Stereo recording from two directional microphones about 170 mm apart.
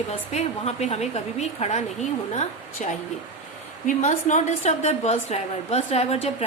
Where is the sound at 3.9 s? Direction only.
45° left (ahead or behind).